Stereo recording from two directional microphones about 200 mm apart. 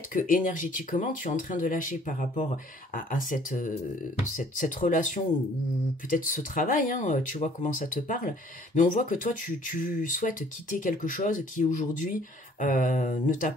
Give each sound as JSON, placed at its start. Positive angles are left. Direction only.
{"t": 0.1, "sound": "speech", "side_deg": 40}